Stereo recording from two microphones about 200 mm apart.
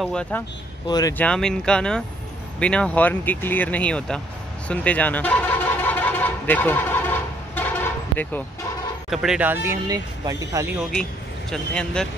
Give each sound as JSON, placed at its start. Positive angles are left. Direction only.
{"t": 0.0, "sound": "speech", "side_deg": 5}
{"t": 0.8, "sound": "speech", "side_deg": 20}
{"t": 1.1, "sound": "speech", "side_deg": 5}
{"t": 4.6, "sound": "a sound", "side_deg": 5}
{"t": 9.1, "sound": "speech", "side_deg": -5}
{"t": 11.5, "sound": "speech", "side_deg": 5}